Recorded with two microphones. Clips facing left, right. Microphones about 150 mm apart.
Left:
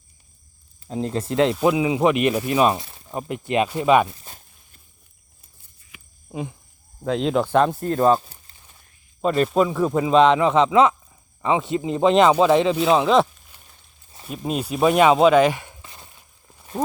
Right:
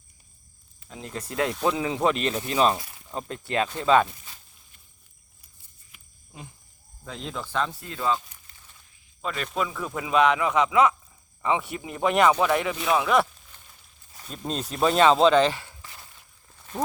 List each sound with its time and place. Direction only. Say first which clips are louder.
0.9 s a man's voice: left 11 dB; 35° left (ahead or behind)
1.5 s speech: left 6 dB; 10° left (ahead or behind)
2.7 s speech: left 4 dB; 25° left (ahead or behind)
4.2 s walk: left 5 dB; 40° left (ahead or behind)
5.9 s a sound: left 15 dB; 90° left
7.0 s speech: left 14 dB; 75° left (ahead or behind); by 8.2 s 45° left (ahead or behind)
9.2 s a man's voice: left 11 dB; 35° left (ahead or behind)
13.5 s a sound: left 1 dB; 10° left (ahead or behind)